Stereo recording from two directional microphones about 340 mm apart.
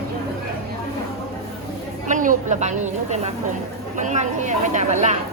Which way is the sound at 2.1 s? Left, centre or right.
Right.